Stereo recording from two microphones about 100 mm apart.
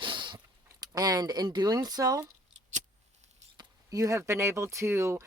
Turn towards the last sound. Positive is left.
turn(degrees=-25)  # may be behind; listen again after turning